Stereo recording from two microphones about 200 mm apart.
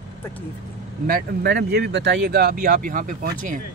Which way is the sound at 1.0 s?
50° right (ahead or behind).